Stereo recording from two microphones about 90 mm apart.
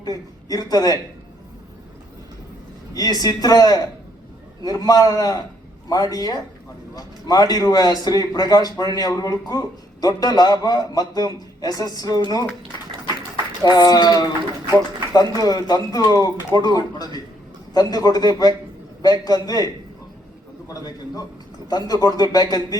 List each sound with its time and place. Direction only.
0.0 s a man's voice: 45° left (ahead or behind)
2.9 s a man's voice: 45° left (ahead or behind)
13.6 s a man's voice: 50° left (ahead or behind)
21.7 s a man's voice: 45° left (ahead or behind)